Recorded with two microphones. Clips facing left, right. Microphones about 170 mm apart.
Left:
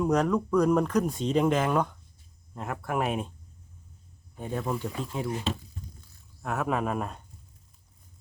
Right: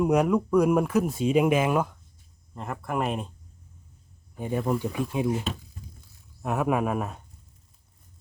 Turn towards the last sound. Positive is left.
turn(degrees=-5)  # may be behind; listen again after turning